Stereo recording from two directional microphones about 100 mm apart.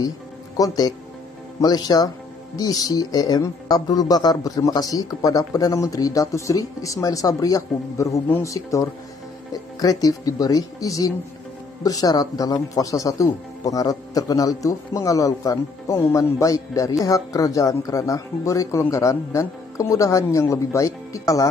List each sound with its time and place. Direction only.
0.6 s speech: 40° left (ahead or behind)